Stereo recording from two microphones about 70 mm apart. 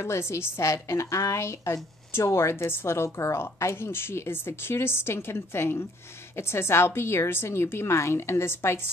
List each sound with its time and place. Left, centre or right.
0.0 s a woman's voice: left